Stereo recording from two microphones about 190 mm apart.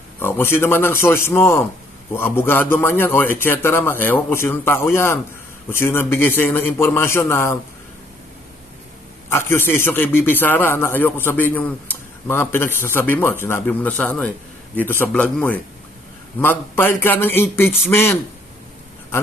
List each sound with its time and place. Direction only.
0.2 s a man's voice: 10° left (ahead or behind)
9.3 s a man's voice: 15° left (ahead or behind)